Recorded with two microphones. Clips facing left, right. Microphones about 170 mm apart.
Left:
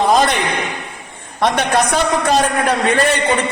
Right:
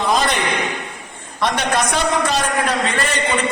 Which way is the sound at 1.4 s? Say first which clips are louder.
Left 4 dB; 55° left (ahead or behind).